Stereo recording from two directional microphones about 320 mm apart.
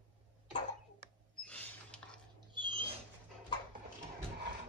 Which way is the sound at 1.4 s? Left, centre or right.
Centre.